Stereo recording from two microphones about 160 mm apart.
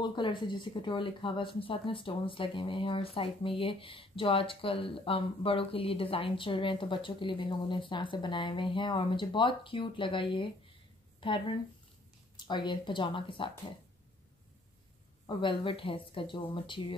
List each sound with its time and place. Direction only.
0.0 s speech: 30° left (ahead or behind)
15.2 s speech: 35° left (ahead or behind)